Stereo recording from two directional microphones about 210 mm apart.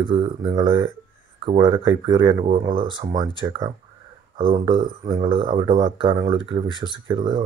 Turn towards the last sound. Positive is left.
turn(degrees=-25)  # may be behind; listen again after turning